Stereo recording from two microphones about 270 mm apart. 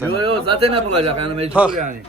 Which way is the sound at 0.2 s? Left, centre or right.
Centre.